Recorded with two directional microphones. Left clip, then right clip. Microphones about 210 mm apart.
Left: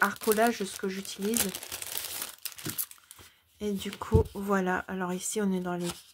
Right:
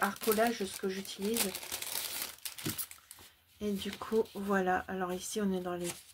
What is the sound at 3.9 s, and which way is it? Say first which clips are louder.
Speech: left 4 dB; 30° left (ahead or behind).